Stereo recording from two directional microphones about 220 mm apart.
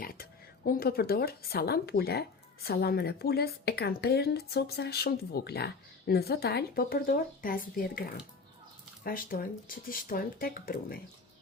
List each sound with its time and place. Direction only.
0.0 s speech: 40° left (ahead or behind)